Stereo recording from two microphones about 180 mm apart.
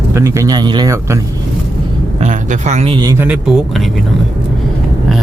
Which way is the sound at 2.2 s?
40° right (ahead or behind).